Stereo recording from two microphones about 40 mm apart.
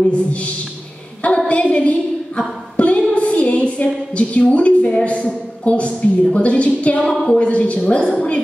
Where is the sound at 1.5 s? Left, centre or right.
Left.